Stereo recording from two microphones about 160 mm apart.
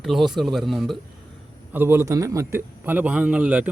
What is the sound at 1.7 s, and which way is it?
A man's voice, 15° right (ahead or behind).